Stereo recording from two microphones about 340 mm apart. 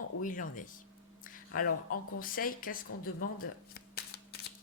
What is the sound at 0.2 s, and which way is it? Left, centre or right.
Speech, left.